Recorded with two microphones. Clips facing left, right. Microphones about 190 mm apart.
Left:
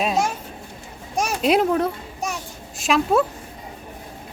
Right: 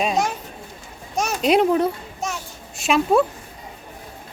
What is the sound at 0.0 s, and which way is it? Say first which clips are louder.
A child's voice: even; 5° left (ahead or behind).